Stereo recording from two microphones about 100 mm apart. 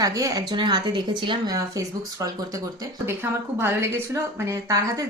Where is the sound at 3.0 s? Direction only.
25° right (ahead or behind).